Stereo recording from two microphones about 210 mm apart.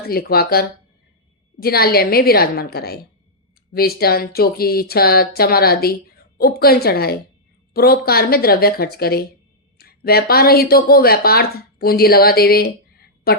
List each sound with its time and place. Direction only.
0.1 s speech: 45° left (ahead or behind)